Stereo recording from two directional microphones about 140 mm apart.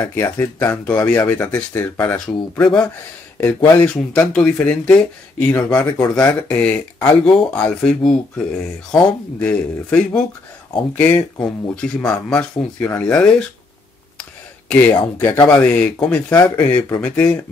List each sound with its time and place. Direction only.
0.0 s speech: 15° left (ahead or behind)
14.7 s speech: 15° left (ahead or behind)